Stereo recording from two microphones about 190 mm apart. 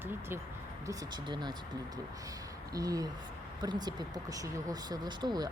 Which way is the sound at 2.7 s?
20° right (ahead or behind).